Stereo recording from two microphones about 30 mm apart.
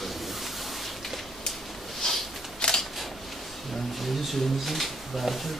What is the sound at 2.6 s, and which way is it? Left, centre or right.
Single-lens reflex camera, left.